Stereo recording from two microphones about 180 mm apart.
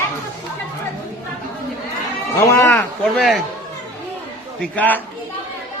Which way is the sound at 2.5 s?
15° left (ahead or behind).